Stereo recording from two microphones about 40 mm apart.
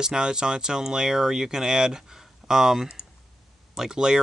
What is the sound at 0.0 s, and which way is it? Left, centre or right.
Speech, centre.